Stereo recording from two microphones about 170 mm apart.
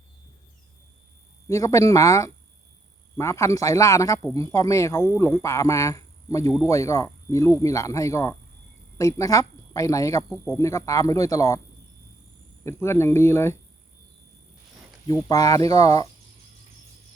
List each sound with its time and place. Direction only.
1.5 s a man's voice: 20° left (ahead or behind)
12.6 s speech: 15° left (ahead or behind)
15.3 s a man's voice: 20° left (ahead or behind)